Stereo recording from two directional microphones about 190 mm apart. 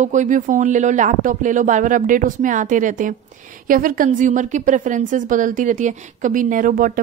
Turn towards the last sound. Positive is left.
turn(degrees=-45)  # may be behind; listen again after turning